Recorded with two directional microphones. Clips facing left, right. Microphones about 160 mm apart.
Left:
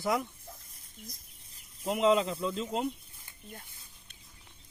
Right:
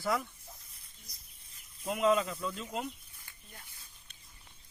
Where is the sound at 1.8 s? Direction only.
25° left (ahead or behind).